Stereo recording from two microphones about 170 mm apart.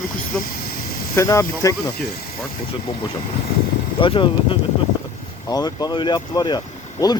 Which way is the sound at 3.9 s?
30° left (ahead or behind).